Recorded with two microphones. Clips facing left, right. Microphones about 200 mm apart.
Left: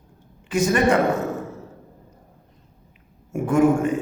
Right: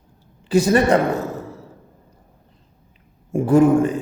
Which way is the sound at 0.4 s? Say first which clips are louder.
Right 3 dB; 35° right (ahead or behind).